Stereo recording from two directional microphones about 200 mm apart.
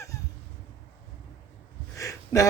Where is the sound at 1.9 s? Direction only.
15° left (ahead or behind).